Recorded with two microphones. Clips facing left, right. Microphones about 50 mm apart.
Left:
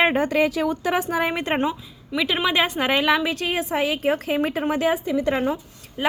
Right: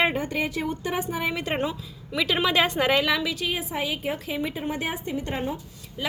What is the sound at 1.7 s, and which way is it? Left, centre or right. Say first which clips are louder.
A woman's voice: left 5 dB; centre.